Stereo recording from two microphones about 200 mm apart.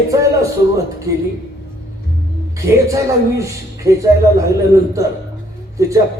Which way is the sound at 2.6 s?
15° right (ahead or behind).